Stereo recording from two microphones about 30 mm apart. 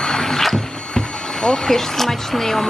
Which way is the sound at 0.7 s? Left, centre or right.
Left.